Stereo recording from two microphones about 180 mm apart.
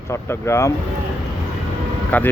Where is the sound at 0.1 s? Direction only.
15° left (ahead or behind).